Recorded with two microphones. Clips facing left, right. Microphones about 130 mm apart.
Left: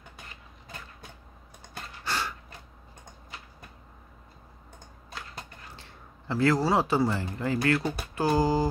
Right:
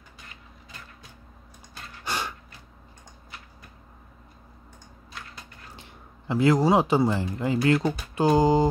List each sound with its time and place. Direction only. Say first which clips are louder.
2.0 s gasp: right 1 dB; 20° right (ahead or behind)
5.8 s speech: right 2 dB; 15° right (ahead or behind)
7.6 s a sound: right 5 dB; 20° right (ahead or behind)